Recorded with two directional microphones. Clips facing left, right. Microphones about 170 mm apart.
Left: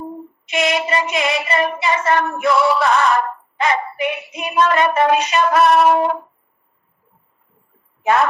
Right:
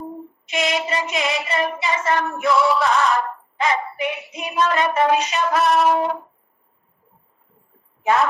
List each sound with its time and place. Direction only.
0.4 s female singing: 65° left (ahead or behind)
8.0 s a woman's voice: 60° left (ahead or behind)